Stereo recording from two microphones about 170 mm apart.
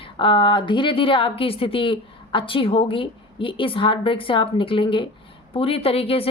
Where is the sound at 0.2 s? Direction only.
30° left (ahead or behind).